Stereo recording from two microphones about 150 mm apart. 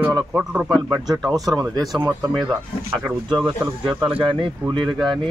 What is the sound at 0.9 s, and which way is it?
Speech, 25° right (ahead or behind).